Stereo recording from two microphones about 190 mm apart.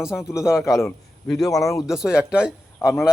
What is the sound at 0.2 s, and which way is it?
Speech, 15° left (ahead or behind).